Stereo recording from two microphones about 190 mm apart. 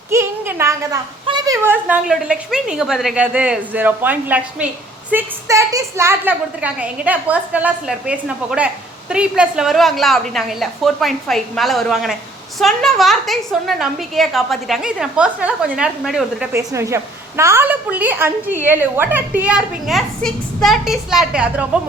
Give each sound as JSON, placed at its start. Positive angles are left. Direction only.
{"t": 0.1, "sound": "a woman's voice", "side_deg": -15}